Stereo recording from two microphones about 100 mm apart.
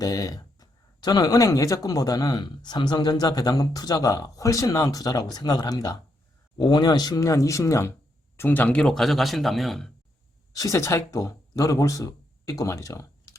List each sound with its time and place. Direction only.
0.0 s speech: 40° left (ahead or behind)
8.4 s speech: 20° left (ahead or behind); by 9.9 s centre (ahead or behind)
10.5 s speech: 35° left (ahead or behind)